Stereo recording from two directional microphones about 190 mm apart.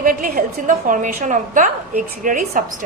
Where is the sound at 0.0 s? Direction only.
45° right (ahead or behind).